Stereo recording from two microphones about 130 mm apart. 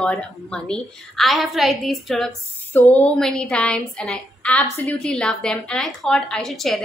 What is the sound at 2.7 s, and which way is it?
A woman's voice, 15° left (ahead or behind).